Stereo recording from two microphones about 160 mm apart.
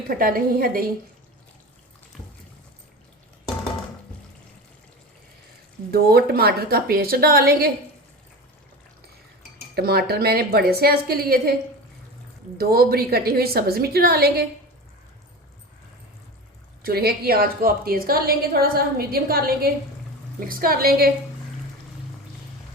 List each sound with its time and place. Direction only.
0.1 s a woman's voice: 65° right (ahead or behind)
5.9 s a woman's voice: 75° right (ahead or behind)
9.7 s a woman's voice: 75° right (ahead or behind)
12.5 s a woman's voice: 70° right (ahead or behind)
16.8 s a woman's voice: 75° right (ahead or behind)